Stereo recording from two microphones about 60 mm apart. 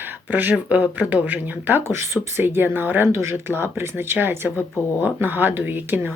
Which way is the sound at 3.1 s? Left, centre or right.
Right.